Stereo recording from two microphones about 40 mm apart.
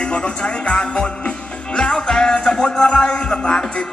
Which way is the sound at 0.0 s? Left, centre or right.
Left.